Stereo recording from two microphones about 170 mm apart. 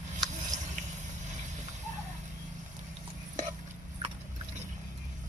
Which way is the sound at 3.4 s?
45° right (ahead or behind).